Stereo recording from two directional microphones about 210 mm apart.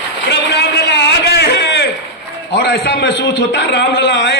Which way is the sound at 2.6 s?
55° left (ahead or behind).